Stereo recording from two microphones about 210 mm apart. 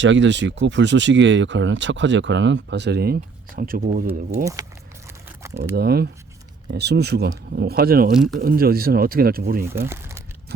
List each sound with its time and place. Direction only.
0.0 s speech: 60° right (ahead or behind); by 4.0 s 40° right (ahead or behind)
5.7 s speech: 50° right (ahead or behind)
8.1 s speech: centre (ahead or behind)
8.4 s speech: 45° right (ahead or behind)
9.6 s speech: 10° right (ahead or behind)